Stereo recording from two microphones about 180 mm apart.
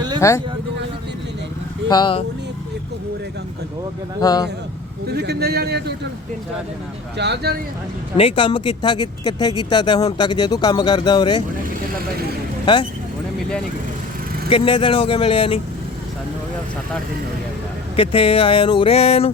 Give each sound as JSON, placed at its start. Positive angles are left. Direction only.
{"t": 0.2, "sound": "speech", "side_deg": 15}
{"t": 1.9, "sound": "speech", "side_deg": 25}
{"t": 4.2, "sound": "speech", "side_deg": 20}
{"t": 5.0, "sound": "a man's voice", "side_deg": -65}
{"t": 7.2, "sound": "speech", "side_deg": -70}
{"t": 8.1, "sound": "speech", "side_deg": 30}
{"t": 14.5, "sound": "speech", "side_deg": 30}
{"t": 17.9, "sound": "speech", "side_deg": 30}